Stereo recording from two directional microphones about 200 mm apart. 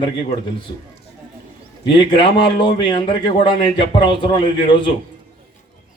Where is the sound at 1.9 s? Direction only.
25° left (ahead or behind).